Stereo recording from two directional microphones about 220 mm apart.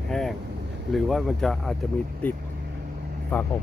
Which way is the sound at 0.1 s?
Centre (ahead or behind).